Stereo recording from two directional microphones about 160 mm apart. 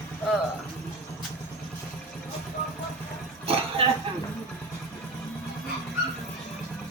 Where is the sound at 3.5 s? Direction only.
35° right (ahead or behind).